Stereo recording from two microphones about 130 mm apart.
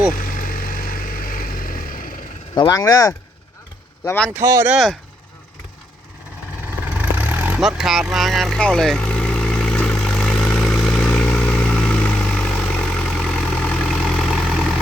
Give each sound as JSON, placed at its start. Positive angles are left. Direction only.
{"t": 0.2, "sound": "vehicle", "side_deg": 90}
{"t": 2.6, "sound": "speech", "side_deg": 30}
{"t": 4.3, "sound": "speech", "side_deg": -20}
{"t": 4.7, "sound": "speech", "side_deg": 0}
{"t": 6.7, "sound": "vehicle", "side_deg": -10}
{"t": 7.6, "sound": "vehicle", "side_deg": -5}